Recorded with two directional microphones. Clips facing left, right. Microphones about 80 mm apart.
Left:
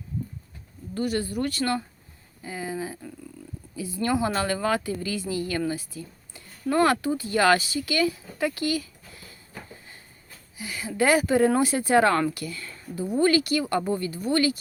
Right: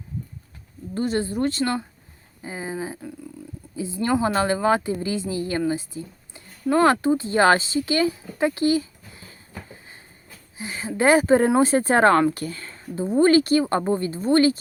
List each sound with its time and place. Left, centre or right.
0.9 s a woman's voice: right
10.6 s a woman's voice: right